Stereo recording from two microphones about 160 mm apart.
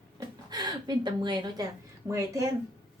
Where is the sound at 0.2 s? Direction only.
25° right (ahead or behind).